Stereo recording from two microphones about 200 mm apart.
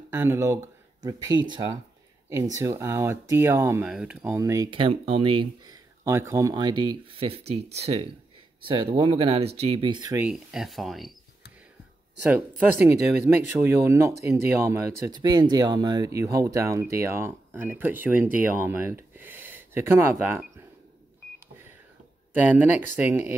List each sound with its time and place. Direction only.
0.1 s speech: 10° right (ahead or behind)
10.2 s speech: centre (ahead or behind)
12.2 s speech: 10° right (ahead or behind)
22.4 s speech: 10° right (ahead or behind)